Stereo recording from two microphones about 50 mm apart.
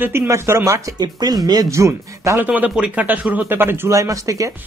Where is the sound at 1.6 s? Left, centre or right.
Right.